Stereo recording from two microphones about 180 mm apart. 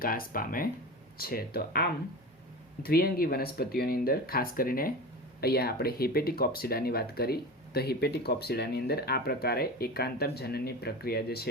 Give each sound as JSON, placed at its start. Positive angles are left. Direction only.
{"t": 0.0, "sound": "speech", "side_deg": 55}